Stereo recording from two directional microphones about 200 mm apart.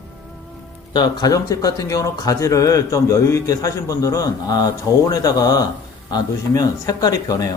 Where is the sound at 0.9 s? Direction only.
20° left (ahead or behind).